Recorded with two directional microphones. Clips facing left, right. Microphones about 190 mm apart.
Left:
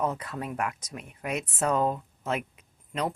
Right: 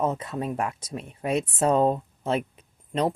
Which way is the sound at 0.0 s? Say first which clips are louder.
Right 4 dB; 25° right (ahead or behind).